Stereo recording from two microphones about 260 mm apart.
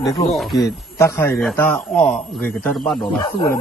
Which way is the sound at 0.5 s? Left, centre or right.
Centre.